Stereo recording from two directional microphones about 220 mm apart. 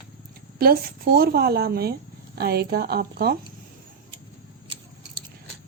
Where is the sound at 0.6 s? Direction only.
40° right (ahead or behind).